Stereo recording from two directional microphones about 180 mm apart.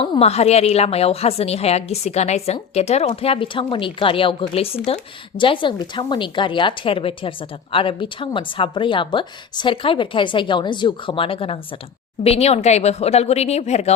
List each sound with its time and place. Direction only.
0.0 s a woman's voice: 35° left (ahead or behind)